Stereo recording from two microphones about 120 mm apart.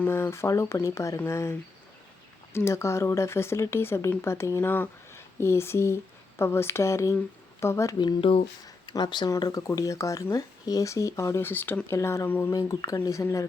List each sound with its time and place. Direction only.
0.0 s speech: 20° left (ahead or behind)
7.9 s speech: 45° left (ahead or behind)
8.6 s speech: 35° left (ahead or behind); by 12.5 s 20° left (ahead or behind)
12.5 s speech: 30° left (ahead or behind)